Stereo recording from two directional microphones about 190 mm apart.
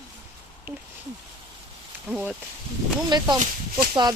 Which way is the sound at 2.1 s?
5° right (ahead or behind).